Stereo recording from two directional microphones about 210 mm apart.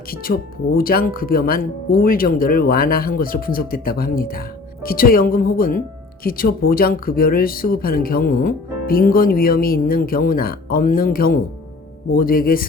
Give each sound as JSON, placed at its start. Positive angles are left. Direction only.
{"t": 0.1, "sound": "speech", "side_deg": 45}